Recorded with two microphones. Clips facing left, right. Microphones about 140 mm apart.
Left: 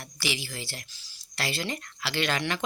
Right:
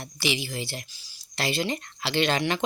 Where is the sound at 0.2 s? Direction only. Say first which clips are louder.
Right 5 dB; 20° right (ahead or behind).